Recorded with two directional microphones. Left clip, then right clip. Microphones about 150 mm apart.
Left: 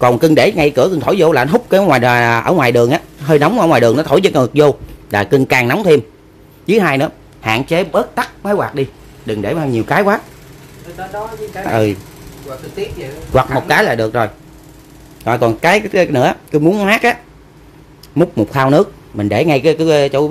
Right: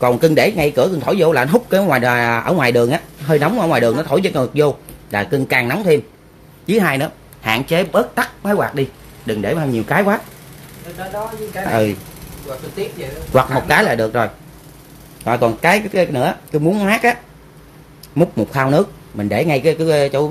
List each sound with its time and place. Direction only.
0.0 s speech: 35° left (ahead or behind)
11.5 s speech: 20° left (ahead or behind)
13.3 s speech: 20° left (ahead or behind)
15.2 s speech: 30° left (ahead or behind)